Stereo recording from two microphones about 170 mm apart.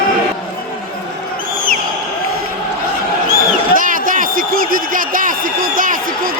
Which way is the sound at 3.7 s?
55° right (ahead or behind).